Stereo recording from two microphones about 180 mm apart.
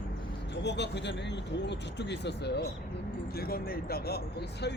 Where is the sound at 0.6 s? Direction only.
70° left (ahead or behind).